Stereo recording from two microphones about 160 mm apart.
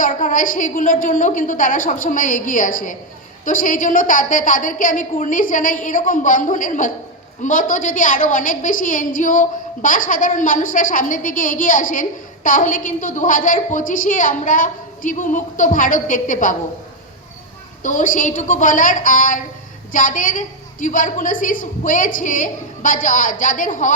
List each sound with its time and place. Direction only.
0.0 s a woman's voice: 55° left (ahead or behind)
17.8 s a woman's voice: 55° left (ahead or behind)